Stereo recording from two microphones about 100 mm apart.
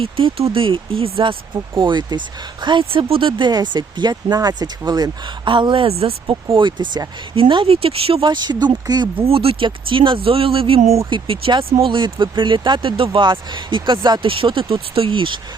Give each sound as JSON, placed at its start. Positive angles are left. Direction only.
{"t": 0.0, "sound": "speech", "side_deg": -65}
{"t": 7.3, "sound": "speech", "side_deg": -60}
{"t": 8.2, "sound": "speech", "side_deg": -50}
{"t": 9.1, "sound": "speech", "side_deg": -70}
{"t": 11.1, "sound": "speech", "side_deg": -60}